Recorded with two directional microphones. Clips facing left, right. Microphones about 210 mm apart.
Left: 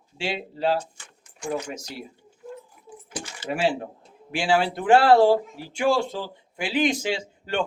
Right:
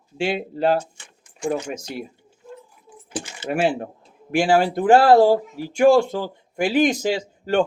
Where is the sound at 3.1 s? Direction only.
25° right (ahead or behind).